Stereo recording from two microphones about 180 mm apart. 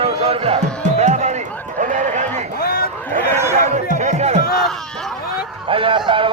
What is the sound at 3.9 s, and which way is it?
Music, 40° right (ahead or behind).